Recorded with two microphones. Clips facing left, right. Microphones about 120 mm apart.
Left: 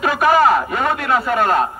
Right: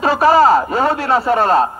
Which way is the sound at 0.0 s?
30° right (ahead or behind).